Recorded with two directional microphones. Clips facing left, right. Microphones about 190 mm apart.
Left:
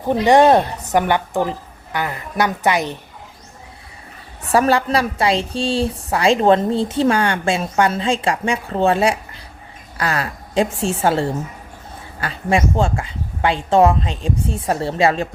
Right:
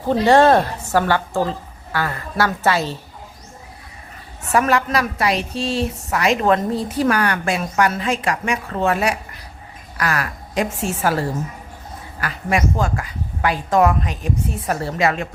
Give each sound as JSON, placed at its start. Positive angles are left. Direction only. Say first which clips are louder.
{"t": 0.1, "sound": "a woman's voice", "louder": "left 1 dB", "side_deg": 15}
{"t": 4.4, "sound": "a woman's voice", "louder": "left 2 dB", "side_deg": 30}